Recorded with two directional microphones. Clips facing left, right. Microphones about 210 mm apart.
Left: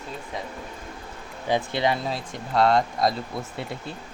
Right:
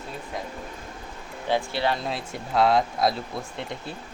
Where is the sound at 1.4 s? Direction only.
15° left (ahead or behind).